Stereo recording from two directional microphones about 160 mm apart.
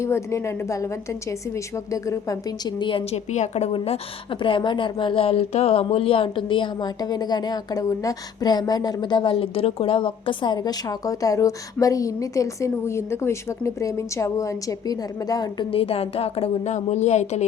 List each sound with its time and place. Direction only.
0.0 s a woman's voice: 20° left (ahead or behind)
1.9 s speech: 20° left (ahead or behind)
3.3 s a woman's voice: 45° left (ahead or behind)